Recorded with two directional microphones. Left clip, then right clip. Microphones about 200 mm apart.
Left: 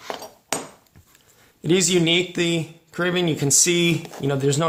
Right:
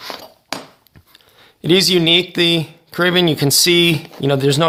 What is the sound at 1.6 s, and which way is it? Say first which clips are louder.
Speech: right 6 dB; 30° right (ahead or behind).